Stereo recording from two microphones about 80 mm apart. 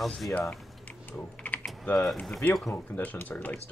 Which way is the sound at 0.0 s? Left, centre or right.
Centre.